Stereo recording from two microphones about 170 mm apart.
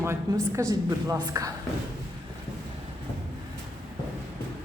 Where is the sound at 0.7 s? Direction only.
20° right (ahead or behind).